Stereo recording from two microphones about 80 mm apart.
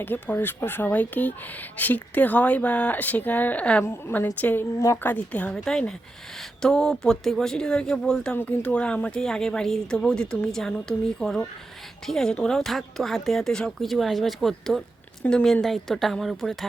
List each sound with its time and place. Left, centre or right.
0.0 s speech: left
3.8 s a woman's voice: left; by 8.4 s centre
8.4 s a woman's voice: centre